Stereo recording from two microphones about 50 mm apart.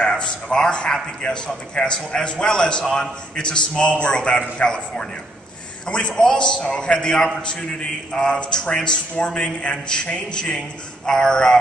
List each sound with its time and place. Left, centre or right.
0.0 s a man's voice: centre